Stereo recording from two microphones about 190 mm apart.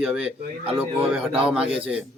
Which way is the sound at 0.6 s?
30° right (ahead or behind).